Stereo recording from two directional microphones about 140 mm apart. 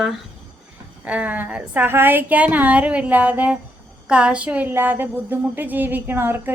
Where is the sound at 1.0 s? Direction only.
10° right (ahead or behind).